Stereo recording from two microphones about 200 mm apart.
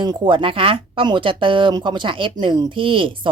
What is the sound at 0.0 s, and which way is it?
Speech, 20° right (ahead or behind).